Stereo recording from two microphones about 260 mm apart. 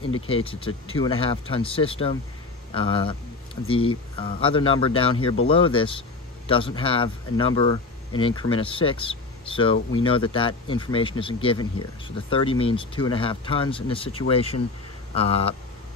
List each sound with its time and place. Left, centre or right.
0.5 s speech: left